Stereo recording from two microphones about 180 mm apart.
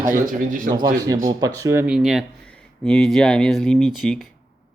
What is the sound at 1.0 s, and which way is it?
Speech, 20° right (ahead or behind).